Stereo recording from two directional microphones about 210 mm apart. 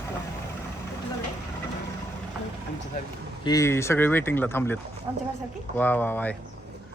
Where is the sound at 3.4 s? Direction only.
15° left (ahead or behind).